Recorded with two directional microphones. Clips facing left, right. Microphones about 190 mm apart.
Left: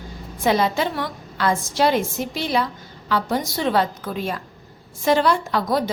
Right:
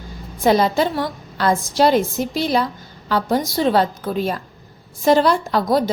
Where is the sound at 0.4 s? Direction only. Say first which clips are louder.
Right 4 dB; 35° right (ahead or behind).